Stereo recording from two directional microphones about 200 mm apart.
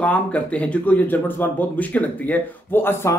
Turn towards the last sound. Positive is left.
turn(degrees=10)  # may be behind; listen again after turning